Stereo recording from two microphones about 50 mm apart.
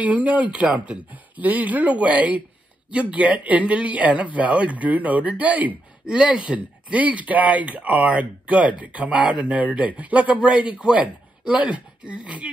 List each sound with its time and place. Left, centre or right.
0.0 s speech: right
6.0 s speech: right